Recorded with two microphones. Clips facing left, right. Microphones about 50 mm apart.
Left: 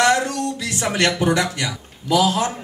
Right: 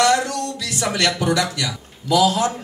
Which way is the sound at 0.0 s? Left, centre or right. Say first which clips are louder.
Even; left.